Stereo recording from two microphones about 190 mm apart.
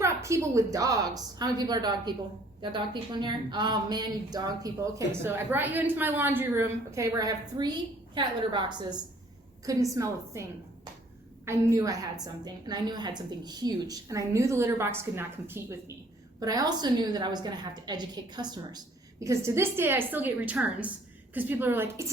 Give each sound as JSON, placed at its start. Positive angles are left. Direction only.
{"t": 0.0, "sound": "a woman's voice", "side_deg": -15}
{"t": 11.4, "sound": "a woman's voice", "side_deg": -15}